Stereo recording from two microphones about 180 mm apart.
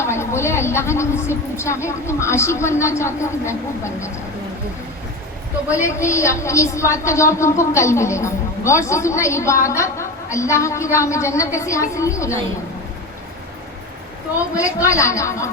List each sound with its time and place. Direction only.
0.0 s a woman's voice: 15° left (ahead or behind)
5.8 s a woman's voice: 15° left (ahead or behind)
14.8 s a woman's voice: 15° left (ahead or behind)